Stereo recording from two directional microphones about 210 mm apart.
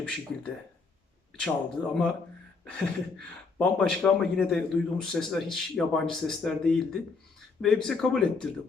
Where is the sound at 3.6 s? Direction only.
5° left (ahead or behind).